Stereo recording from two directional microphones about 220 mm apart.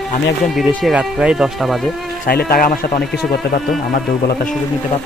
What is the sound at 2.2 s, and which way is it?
Speech, 45° left (ahead or behind).